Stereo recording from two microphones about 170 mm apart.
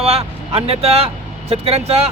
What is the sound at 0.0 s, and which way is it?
A man's voice, 35° right (ahead or behind).